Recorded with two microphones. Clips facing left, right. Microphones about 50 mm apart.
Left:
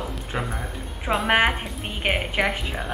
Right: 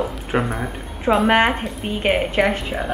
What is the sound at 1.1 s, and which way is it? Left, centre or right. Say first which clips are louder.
A woman's voice: right 5 dB; centre.